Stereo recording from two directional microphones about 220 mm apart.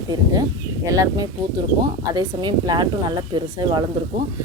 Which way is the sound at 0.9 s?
15° right (ahead or behind).